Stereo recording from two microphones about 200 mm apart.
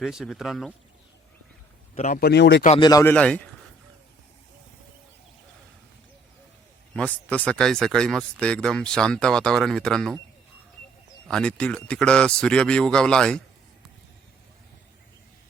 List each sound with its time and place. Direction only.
0.0 s speech: centre (ahead or behind)
2.0 s speech: 45° left (ahead or behind)
2.6 s a man's voice: 25° left (ahead or behind); by 3.5 s 5° left (ahead or behind)
6.9 s speech: 5° left (ahead or behind)
11.3 s speech: 5° left (ahead or behind)